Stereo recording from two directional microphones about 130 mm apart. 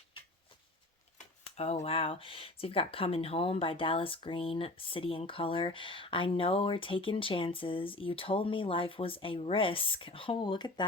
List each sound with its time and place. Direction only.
1.5 s speech: 55° left (ahead or behind); by 10.8 s 35° left (ahead or behind)